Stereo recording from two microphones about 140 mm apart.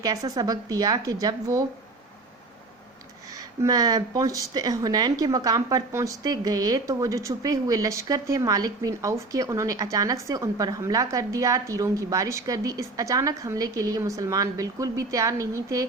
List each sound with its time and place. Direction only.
0.0 s speech: 25° right (ahead or behind)
3.3 s speech: 25° right (ahead or behind)